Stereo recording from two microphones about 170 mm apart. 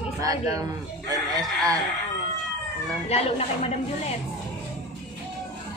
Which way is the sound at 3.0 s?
35° left (ahead or behind).